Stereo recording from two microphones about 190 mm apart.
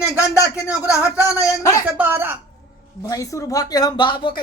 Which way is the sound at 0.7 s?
5° right (ahead or behind).